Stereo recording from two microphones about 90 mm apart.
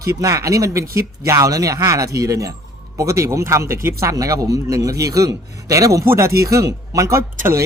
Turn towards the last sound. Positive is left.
turn(degrees=-35)  # may be behind; listen again after turning